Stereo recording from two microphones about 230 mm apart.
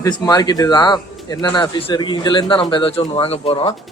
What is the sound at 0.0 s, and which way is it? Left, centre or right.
Speech, centre.